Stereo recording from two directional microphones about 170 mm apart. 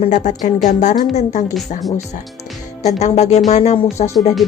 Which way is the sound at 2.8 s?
40° left (ahead or behind).